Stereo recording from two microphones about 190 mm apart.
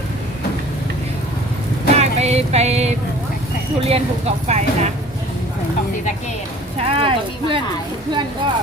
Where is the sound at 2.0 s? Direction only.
35° right (ahead or behind).